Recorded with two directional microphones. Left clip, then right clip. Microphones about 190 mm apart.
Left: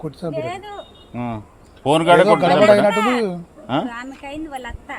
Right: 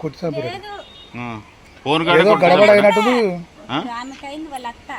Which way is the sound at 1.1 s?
65° left (ahead or behind).